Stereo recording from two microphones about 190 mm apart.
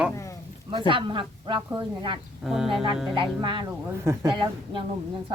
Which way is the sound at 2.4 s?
Centre (ahead or behind).